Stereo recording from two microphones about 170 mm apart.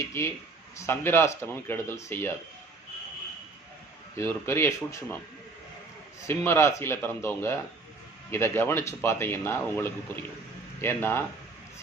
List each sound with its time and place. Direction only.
0.0 s a man's voice: 15° left (ahead or behind)
4.2 s a man's voice: 15° left (ahead or behind)
6.2 s a man's voice: 15° left (ahead or behind)